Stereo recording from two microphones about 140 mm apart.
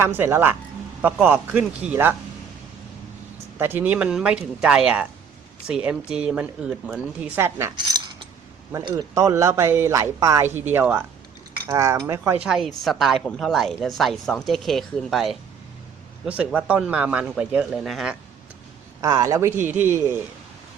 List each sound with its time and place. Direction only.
0.0 s speech: 15° right (ahead or behind)
3.6 s speech: 15° right (ahead or behind)
8.7 s speech: 25° right (ahead or behind)
12.4 s speech: 5° right (ahead or behind)
19.0 s speech: 25° right (ahead or behind)